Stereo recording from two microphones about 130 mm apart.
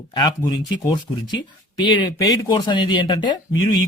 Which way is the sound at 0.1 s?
30° left (ahead or behind).